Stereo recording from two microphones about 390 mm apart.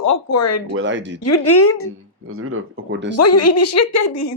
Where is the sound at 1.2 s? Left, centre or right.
Left.